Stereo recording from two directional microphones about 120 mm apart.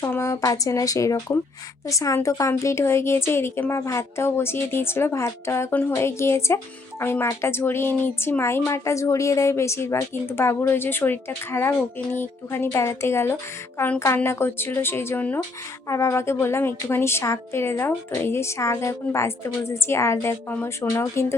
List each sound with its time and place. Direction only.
0.1 s speech: 25° left (ahead or behind)